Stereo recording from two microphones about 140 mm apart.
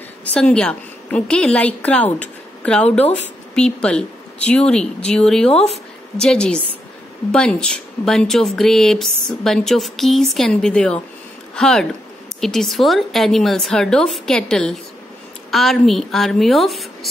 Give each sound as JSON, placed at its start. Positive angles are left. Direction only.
{"t": 0.2, "sound": "a woman's voice", "side_deg": 10}